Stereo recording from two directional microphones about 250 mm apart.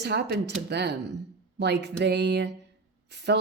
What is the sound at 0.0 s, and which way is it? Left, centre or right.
A woman's voice, right.